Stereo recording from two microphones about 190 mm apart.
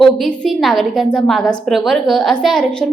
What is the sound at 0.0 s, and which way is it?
A woman's voice, centre (ahead or behind).